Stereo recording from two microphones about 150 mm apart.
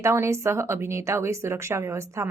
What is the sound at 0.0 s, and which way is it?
Speech, 20° right (ahead or behind).